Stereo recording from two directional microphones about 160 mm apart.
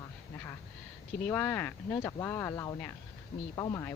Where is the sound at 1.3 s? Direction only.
10° left (ahead or behind).